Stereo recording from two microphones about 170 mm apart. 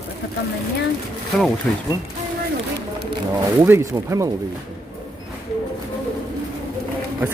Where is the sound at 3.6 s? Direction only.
15° right (ahead or behind).